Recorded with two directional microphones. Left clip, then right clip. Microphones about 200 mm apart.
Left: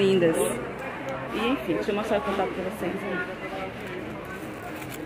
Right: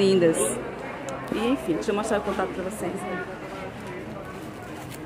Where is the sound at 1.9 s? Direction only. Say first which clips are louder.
Right 2 dB; centre (ahead or behind).